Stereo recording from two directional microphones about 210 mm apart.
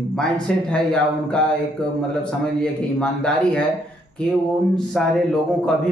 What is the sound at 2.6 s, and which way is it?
Speech, 5° left (ahead or behind).